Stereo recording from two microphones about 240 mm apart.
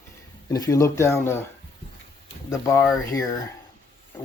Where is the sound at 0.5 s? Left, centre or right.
Centre.